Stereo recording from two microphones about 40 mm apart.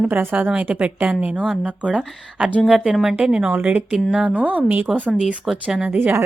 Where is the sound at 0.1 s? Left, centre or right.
Right.